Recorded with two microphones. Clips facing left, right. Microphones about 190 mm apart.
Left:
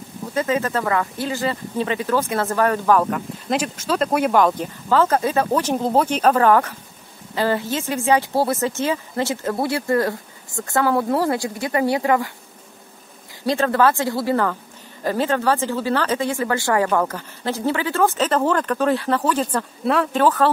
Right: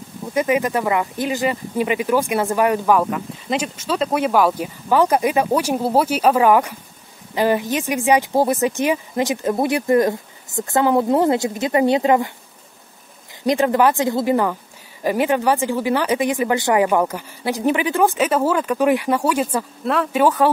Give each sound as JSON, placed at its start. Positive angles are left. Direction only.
{"t": 0.3, "sound": "speech", "side_deg": -15}
{"t": 13.5, "sound": "speech", "side_deg": -15}
{"t": 20.2, "sound": "speech", "side_deg": -10}